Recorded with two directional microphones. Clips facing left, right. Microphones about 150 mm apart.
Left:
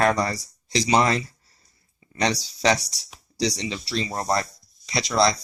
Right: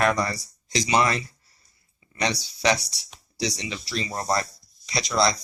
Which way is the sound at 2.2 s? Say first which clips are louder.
Left 2 dB; 35° left (ahead or behind).